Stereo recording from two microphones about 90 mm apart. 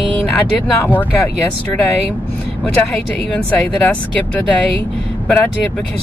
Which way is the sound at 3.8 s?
15° left (ahead or behind).